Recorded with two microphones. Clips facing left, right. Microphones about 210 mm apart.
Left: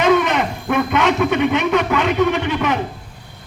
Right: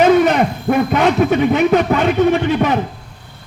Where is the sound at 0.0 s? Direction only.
35° right (ahead or behind).